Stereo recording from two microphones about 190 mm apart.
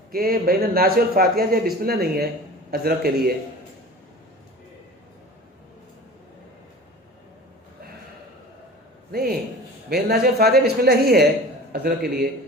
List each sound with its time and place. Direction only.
0.1 s a man's voice: 50° right (ahead or behind)
9.9 s speech: 60° right (ahead or behind)